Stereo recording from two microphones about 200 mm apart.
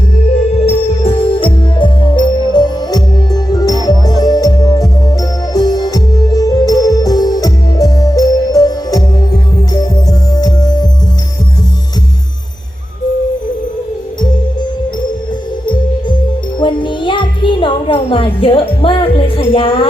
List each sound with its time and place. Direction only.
0.6 s music: 30° left (ahead or behind)
15.6 s music: 25° left (ahead or behind)